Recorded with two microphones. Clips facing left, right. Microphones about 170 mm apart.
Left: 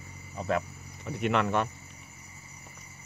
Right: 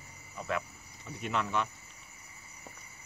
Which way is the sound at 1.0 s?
70° left (ahead or behind).